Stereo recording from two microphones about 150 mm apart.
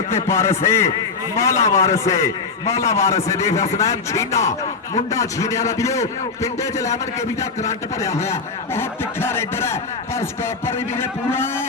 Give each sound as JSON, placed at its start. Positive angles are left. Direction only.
{"t": 0.1, "sound": "a man's voice", "side_deg": 20}